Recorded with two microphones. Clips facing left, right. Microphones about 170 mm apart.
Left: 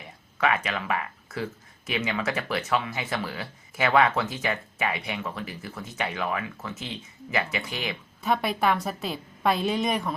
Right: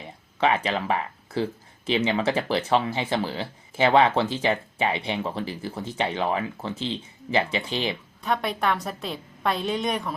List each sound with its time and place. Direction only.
0.0 s a sound: 30° right (ahead or behind)
1.9 s speech: 30° right (ahead or behind)
8.2 s a woman's voice: 5° left (ahead or behind)